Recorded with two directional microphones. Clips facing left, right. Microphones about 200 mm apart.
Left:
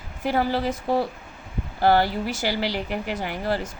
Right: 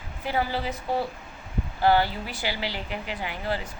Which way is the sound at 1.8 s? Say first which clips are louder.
Left 2 dB; 45° left (ahead or behind).